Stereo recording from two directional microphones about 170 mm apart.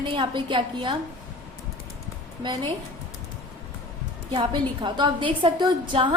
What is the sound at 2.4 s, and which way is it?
Speech, 25° right (ahead or behind).